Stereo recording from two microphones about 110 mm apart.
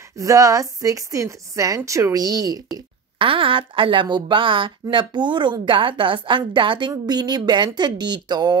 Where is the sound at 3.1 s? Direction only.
50° right (ahead or behind).